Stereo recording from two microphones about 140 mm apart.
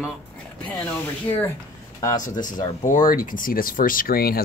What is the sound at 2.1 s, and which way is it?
Speech, 65° left (ahead or behind).